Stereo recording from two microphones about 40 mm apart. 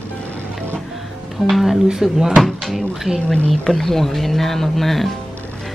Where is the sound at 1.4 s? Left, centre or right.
Centre.